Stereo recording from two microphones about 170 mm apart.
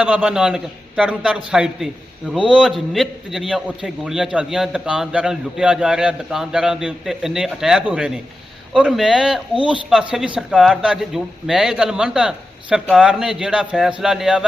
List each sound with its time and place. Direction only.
0.0 s a man's voice: 5° right (ahead or behind)